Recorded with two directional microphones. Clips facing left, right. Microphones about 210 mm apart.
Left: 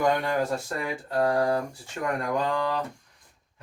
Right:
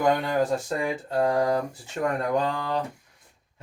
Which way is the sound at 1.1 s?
20° right (ahead or behind).